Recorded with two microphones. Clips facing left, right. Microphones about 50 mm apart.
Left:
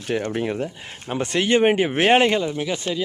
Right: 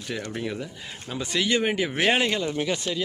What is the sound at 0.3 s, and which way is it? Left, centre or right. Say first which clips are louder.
Speech: left 7 dB; left.